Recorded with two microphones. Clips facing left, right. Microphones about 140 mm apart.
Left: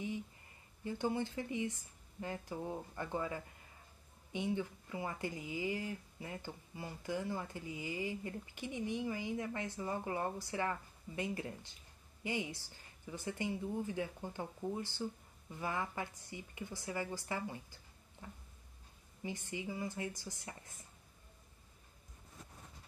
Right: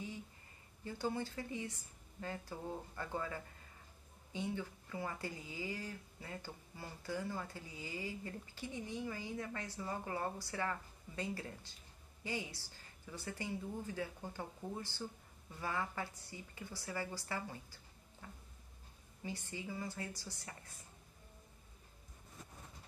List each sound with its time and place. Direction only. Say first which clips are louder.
0.8 s speech: left 3 dB; 20° left (ahead or behind)
18.2 s a sound: left 2 dB; 20° left (ahead or behind)
19.2 s speech: left 3 dB; 20° left (ahead or behind)